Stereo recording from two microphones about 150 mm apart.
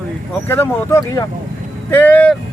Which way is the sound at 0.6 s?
20° left (ahead or behind).